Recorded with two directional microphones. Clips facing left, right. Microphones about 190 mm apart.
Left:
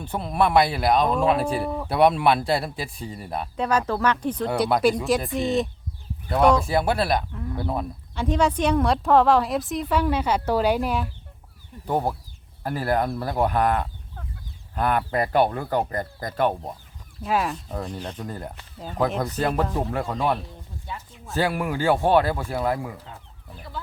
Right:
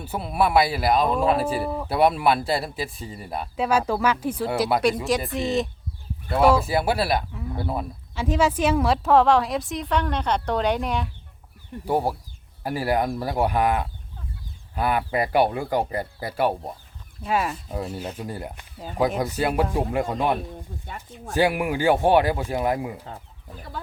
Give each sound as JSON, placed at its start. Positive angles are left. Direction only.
{"t": 0.0, "sound": "speech", "side_deg": -5}
{"t": 11.9, "sound": "speech", "side_deg": -10}